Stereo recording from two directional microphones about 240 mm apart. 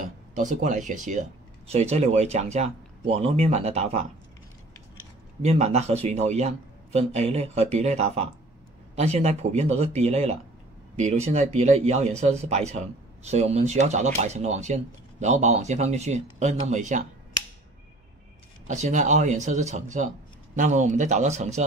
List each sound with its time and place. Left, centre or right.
0.0 s speech: right
5.4 s speech: right
18.7 s speech: right